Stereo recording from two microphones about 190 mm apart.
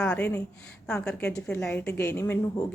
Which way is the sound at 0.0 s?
5° left (ahead or behind).